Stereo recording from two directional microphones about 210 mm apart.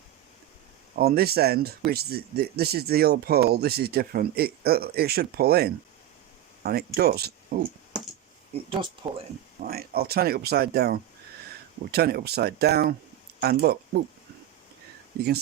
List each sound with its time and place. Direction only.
0.9 s speech: 45° right (ahead or behind)
8.5 s speech: 30° right (ahead or behind)
9.6 s speech: 45° right (ahead or behind)